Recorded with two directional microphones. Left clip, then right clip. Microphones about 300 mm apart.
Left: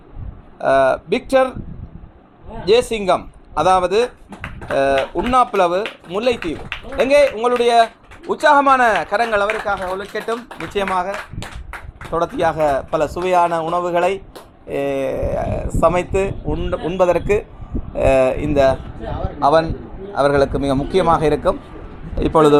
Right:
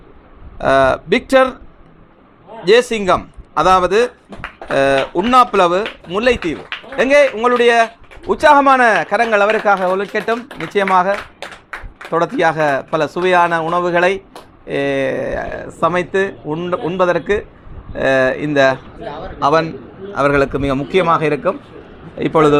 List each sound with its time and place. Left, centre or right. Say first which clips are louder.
0.6 s a man's voice: right 2 dB; centre
2.6 s a man's voice: right 3 dB; centre
9.7 s speech: right 8 dB; right
10.0 s speech: right 5 dB; right
12.1 s a man's voice: right 3 dB; right; by 22.5 s centre